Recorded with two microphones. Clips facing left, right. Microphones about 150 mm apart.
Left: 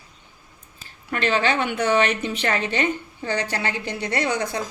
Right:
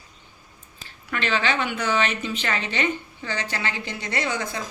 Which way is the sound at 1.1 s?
45° left (ahead or behind).